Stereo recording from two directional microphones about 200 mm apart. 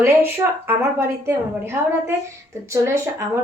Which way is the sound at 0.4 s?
15° right (ahead or behind).